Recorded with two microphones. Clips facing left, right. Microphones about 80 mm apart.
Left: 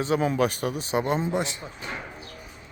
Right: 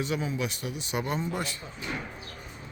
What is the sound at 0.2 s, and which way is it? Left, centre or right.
Speech, left.